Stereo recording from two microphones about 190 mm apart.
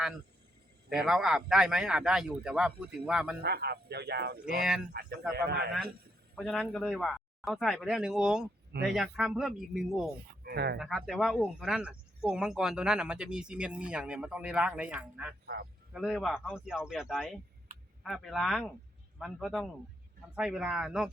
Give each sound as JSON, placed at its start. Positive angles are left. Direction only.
{"t": 0.9, "sound": "speech", "side_deg": 0}
{"t": 3.4, "sound": "a man's voice", "side_deg": -60}
{"t": 4.4, "sound": "speech", "side_deg": -5}
{"t": 4.9, "sound": "a man's voice", "side_deg": -55}
{"t": 6.3, "sound": "speech", "side_deg": 0}
{"t": 10.2, "sound": "speech", "side_deg": -55}
{"t": 10.8, "sound": "speech", "side_deg": 0}